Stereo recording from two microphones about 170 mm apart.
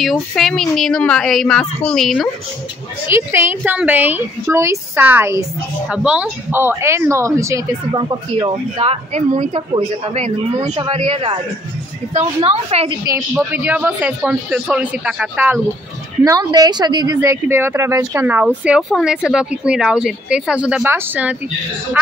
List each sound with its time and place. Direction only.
0.0 s a woman's voice: centre (ahead or behind)
3.1 s speech: 15° right (ahead or behind)
13.5 s speech: 10° right (ahead or behind)
16.3 s speech: 20° right (ahead or behind); by 22.1 s 5° right (ahead or behind)